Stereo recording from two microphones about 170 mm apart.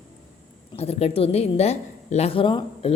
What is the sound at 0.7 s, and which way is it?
Speech, 35° left (ahead or behind).